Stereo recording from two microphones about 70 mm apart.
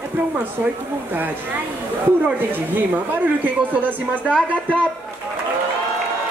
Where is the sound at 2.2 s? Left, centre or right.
Right.